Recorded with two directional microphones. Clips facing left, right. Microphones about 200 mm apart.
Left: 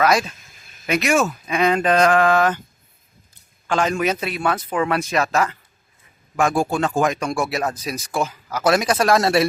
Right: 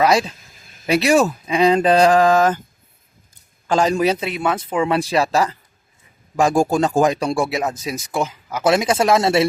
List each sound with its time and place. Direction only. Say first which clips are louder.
0.0 s speech: right 2 dB; 30° right (ahead or behind)
3.7 s speech: right 3 dB; 35° right (ahead or behind)